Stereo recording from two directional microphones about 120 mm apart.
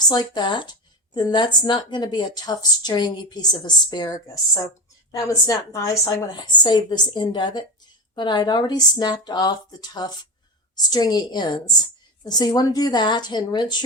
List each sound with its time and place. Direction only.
0.1 s speech: 35° left (ahead or behind)